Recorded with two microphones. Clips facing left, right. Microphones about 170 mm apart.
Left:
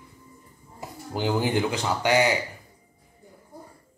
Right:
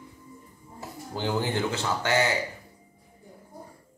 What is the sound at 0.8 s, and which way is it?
Speech, 15° left (ahead or behind).